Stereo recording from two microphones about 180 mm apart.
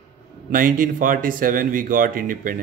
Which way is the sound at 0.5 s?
50° right (ahead or behind).